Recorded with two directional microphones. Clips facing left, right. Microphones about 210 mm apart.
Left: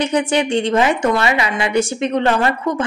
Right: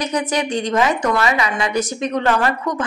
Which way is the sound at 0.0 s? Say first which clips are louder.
Left 4 dB; 30° left (ahead or behind).